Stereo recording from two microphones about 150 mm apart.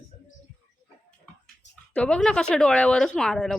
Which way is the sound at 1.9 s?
5° left (ahead or behind).